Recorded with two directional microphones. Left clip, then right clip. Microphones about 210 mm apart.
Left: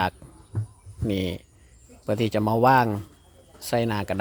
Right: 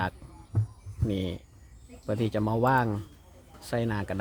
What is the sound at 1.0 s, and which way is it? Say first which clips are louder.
A man's voice: left 5 dB; 20° left (ahead or behind).